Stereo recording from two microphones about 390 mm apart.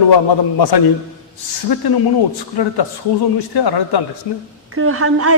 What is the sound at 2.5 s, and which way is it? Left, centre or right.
A man's voice, left.